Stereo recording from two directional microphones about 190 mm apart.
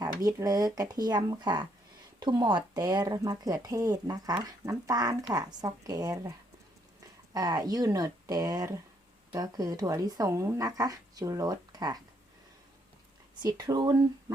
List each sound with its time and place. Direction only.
0.2 s speech: 20° right (ahead or behind)
7.3 s speech: 20° right (ahead or behind)
13.4 s speech: 20° right (ahead or behind)